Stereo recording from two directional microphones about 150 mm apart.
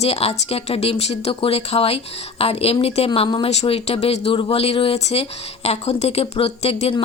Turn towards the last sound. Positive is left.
turn(degrees=40)  # may be behind; listen again after turning